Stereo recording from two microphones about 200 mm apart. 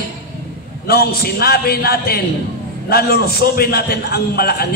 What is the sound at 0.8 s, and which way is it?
A man's voice, 50° left (ahead or behind).